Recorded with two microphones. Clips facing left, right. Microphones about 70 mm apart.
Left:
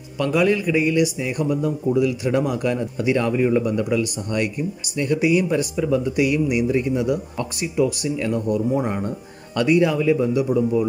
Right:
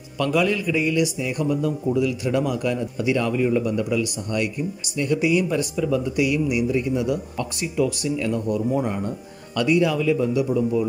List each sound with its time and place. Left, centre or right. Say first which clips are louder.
0.2 s speech: left 2 dB; left